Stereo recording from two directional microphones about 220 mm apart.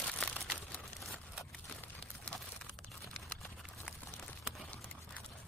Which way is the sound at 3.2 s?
Centre (ahead or behind).